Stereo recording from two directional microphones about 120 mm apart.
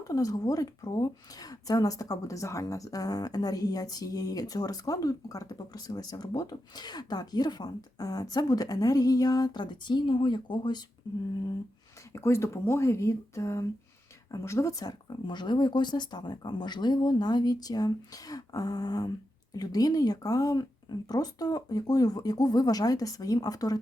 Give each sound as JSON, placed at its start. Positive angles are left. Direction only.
{"t": 0.0, "sound": "speech", "side_deg": 30}
{"t": 12.1, "sound": "speech", "side_deg": 20}